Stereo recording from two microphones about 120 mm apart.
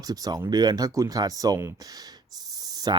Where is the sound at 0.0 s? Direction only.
30° right (ahead or behind).